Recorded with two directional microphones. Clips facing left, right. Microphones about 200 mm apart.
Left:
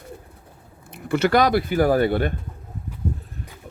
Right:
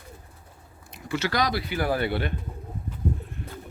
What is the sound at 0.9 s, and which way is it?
Speech, 55° left (ahead or behind).